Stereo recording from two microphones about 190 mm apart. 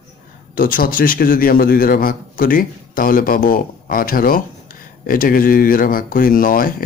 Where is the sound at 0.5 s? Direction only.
50° left (ahead or behind).